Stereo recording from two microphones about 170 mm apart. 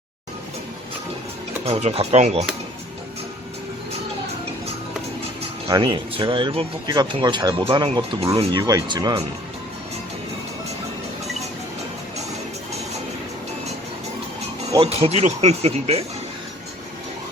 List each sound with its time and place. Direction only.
1.6 s speech: 35° right (ahead or behind)
5.6 s speech: 25° right (ahead or behind)
14.8 s speech: 40° right (ahead or behind)